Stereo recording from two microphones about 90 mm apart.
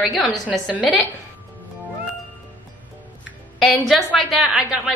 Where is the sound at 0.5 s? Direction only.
15° right (ahead or behind).